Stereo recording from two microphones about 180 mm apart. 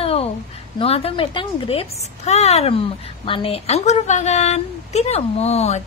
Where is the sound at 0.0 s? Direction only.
35° left (ahead or behind).